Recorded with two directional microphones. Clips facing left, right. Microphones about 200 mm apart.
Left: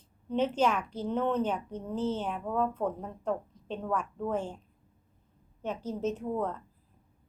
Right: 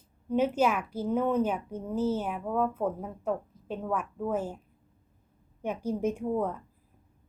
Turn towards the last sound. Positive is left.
turn(degrees=-10)  # may be behind; listen again after turning